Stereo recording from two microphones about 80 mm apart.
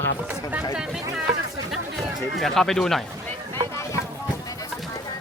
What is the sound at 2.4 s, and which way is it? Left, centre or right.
Speech, centre.